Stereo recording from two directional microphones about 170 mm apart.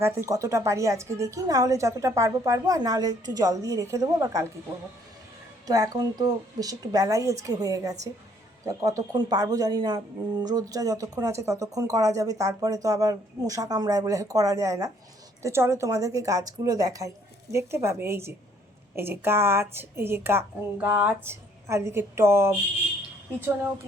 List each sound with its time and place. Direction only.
0.0 s speech: 15° right (ahead or behind)
5.6 s a woman's voice: 20° right (ahead or behind)